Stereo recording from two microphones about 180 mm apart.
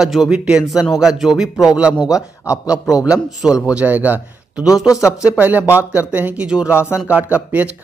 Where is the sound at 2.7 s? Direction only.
20° left (ahead or behind).